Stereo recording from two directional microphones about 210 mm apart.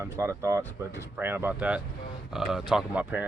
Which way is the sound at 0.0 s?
15° right (ahead or behind).